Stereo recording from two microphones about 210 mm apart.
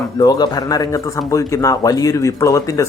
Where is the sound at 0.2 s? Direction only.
20° left (ahead or behind).